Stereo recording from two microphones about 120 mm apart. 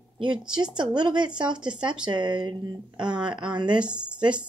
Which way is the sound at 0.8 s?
40° right (ahead or behind).